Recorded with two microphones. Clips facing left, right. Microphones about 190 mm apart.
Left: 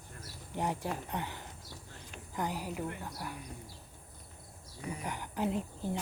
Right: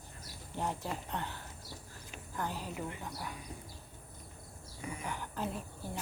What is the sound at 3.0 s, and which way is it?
Speech, centre (ahead or behind).